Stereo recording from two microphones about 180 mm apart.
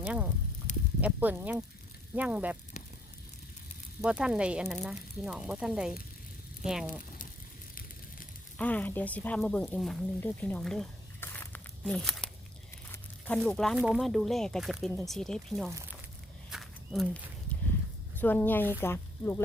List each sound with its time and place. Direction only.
0.0 s speech: 10° right (ahead or behind)
4.0 s speech: 5° right (ahead or behind)
8.5 s speech: 10° left (ahead or behind)
12.9 s crumpling: 5° left (ahead or behind)
13.7 s speech: 5° right (ahead or behind)
16.5 s walk: centre (ahead or behind)
18.2 s speech: 10° left (ahead or behind)